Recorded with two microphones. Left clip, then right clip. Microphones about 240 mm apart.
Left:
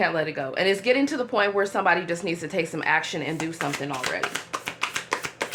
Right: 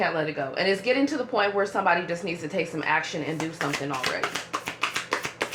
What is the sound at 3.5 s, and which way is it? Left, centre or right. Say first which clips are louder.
Speech: even; left.